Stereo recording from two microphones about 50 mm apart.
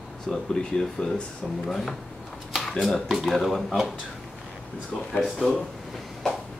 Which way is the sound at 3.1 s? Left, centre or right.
Centre.